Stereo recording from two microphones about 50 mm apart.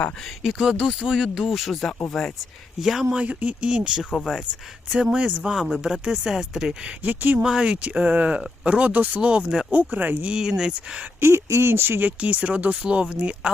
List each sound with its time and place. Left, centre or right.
0.4 s speech: centre
1.4 s speech: centre
2.8 s speech: centre
3.2 s speech: right
5.4 s speech: centre
5.8 s speech: centre
7.0 s speech: right
7.4 s speech: centre
9.7 s speech: right
10.2 s speech: centre
11.2 s speech: right
11.7 s speech: right
12.2 s speech: right